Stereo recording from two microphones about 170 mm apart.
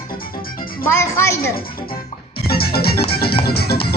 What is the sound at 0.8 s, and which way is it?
Speech, 15° left (ahead or behind).